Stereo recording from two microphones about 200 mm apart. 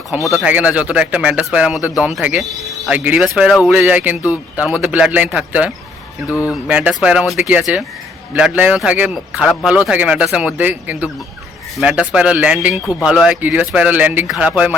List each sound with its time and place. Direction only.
0.1 s speech: 10° right (ahead or behind)
12.8 s speech: 15° left (ahead or behind)
13.1 s speech: 5° right (ahead or behind)